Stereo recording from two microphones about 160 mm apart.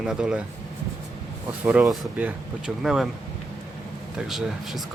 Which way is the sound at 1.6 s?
10° right (ahead or behind).